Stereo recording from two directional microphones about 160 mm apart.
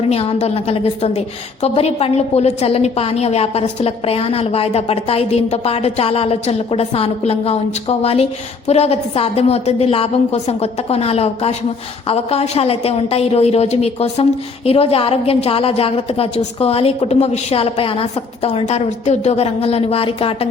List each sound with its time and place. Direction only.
0.1 s a woman's voice: 40° left (ahead or behind)